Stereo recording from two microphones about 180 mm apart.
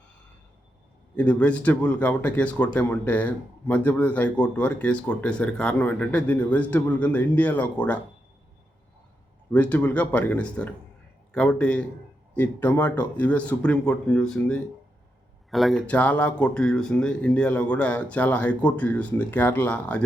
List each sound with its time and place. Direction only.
1.1 s speech: 5° left (ahead or behind)
9.5 s speech: 10° left (ahead or behind)